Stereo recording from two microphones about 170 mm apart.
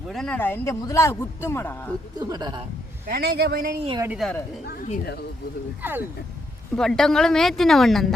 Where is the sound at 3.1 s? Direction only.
70° right (ahead or behind).